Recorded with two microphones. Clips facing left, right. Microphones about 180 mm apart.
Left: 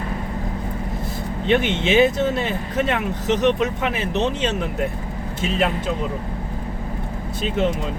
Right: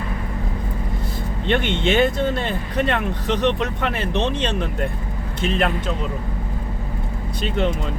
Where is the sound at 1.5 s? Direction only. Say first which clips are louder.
Left 1 dB; 5° left (ahead or behind).